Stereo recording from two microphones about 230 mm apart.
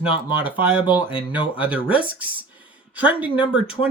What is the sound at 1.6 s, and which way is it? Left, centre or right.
Speech, centre.